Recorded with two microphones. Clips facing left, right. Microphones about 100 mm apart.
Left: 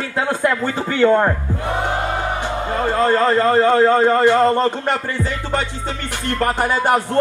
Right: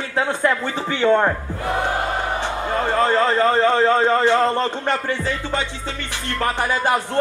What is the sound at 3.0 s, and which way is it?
A man's voice, 10° left (ahead or behind).